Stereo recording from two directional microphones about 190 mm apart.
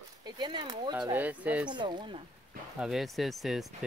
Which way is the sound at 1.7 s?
25° right (ahead or behind).